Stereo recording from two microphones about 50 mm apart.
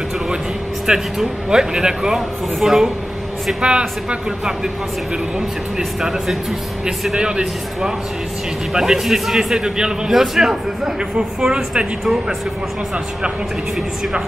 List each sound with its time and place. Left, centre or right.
0.9 s a man's voice: centre
3.6 s speech: right
5.8 s a man's voice: centre
7.2 s a man's voice: centre
11.1 s a man's voice: centre
12.0 s speech: centre